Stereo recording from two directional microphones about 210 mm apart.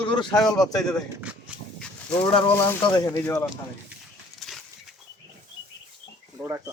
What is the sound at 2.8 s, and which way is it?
Speech, 20° left (ahead or behind).